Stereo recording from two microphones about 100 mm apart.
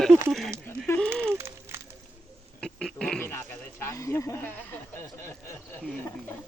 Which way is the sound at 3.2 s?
20° left (ahead or behind).